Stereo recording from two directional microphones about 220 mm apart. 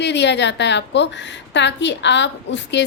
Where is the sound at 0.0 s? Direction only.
50° left (ahead or behind).